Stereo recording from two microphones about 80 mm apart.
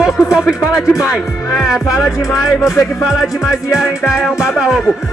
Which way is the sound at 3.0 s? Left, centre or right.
Centre.